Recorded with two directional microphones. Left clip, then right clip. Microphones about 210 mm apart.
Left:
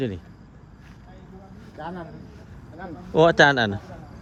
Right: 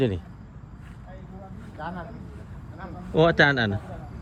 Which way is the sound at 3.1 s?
10° left (ahead or behind).